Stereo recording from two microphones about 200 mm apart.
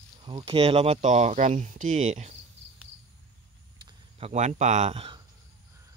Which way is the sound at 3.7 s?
30° right (ahead or behind).